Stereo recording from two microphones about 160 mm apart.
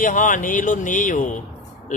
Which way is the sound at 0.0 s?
55° left (ahead or behind).